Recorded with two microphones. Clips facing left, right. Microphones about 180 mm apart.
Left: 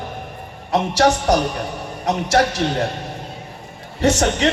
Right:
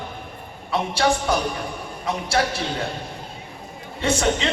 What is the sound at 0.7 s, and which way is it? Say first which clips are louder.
Speech: left 6 dB; 40° left (ahead or behind).